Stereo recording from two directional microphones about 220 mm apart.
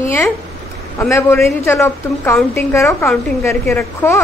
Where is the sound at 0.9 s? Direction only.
10° left (ahead or behind).